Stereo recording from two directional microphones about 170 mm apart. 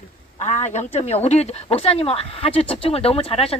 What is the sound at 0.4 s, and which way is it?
Speech, 40° left (ahead or behind).